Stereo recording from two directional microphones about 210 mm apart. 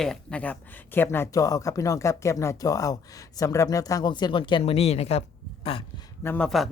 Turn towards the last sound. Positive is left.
turn(degrees=0)  # may be behind; listen again after turning